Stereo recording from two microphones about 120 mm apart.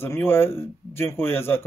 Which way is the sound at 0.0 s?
20° left (ahead or behind).